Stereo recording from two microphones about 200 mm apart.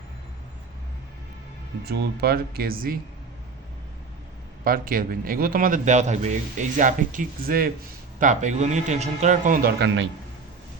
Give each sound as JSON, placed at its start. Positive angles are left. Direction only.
{"t": 1.8, "sound": "a man's voice", "side_deg": -55}
{"t": 4.6, "sound": "a man's voice", "side_deg": -45}
{"t": 9.8, "sound": "a man's voice", "side_deg": -65}